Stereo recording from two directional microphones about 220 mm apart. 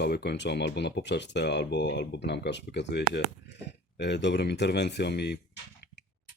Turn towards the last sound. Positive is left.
turn(degrees=50)  # may be behind; listen again after turning